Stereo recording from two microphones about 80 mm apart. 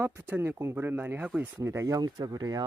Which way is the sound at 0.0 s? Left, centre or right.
Right.